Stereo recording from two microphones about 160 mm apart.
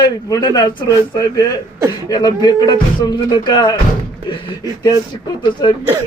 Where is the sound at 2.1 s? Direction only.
25° left (ahead or behind).